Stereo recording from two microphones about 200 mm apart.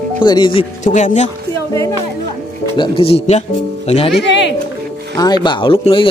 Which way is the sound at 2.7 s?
25° left (ahead or behind).